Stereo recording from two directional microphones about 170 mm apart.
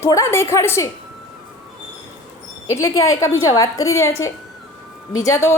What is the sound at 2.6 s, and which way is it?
A woman's voice, 15° left (ahead or behind).